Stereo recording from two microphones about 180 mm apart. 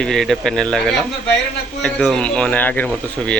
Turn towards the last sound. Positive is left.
turn(degrees=5)  # may be behind; listen again after turning